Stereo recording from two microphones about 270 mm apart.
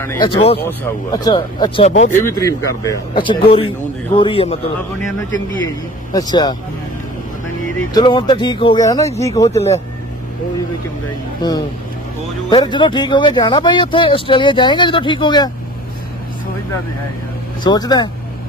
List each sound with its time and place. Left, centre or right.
0.0 s speech: centre
2.2 s a man's voice: centre
5.7 s speech: centre
7.9 s speech: centre
11.4 s speech: centre
17.6 s speech: centre